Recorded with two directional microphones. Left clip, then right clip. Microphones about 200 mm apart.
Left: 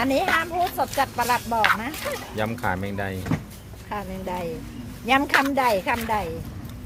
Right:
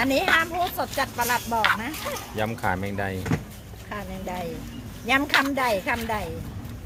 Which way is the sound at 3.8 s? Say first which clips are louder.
Left 3 dB; 35° left (ahead or behind).